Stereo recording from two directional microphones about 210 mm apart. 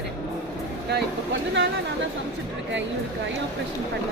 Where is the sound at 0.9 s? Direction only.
55° right (ahead or behind).